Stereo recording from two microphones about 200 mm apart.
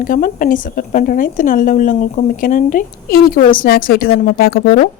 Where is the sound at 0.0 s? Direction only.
40° left (ahead or behind).